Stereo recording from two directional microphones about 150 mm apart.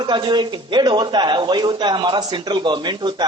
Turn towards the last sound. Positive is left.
turn(degrees=-30)  # may be behind; listen again after turning